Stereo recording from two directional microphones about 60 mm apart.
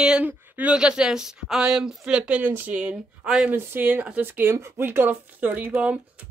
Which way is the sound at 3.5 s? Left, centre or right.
Right.